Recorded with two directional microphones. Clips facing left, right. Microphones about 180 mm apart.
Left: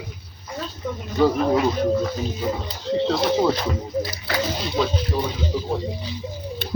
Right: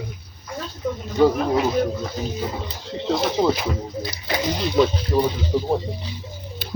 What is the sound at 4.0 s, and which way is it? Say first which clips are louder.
Speech: left 1 dB; 20° right (ahead or behind).